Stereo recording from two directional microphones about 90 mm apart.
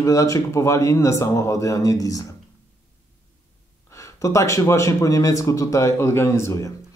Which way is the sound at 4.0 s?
35° left (ahead or behind).